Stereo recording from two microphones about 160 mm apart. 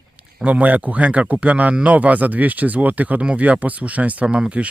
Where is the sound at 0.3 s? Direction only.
10° right (ahead or behind).